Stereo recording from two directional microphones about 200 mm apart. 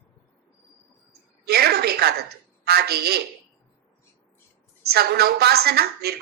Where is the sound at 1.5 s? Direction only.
50° right (ahead or behind).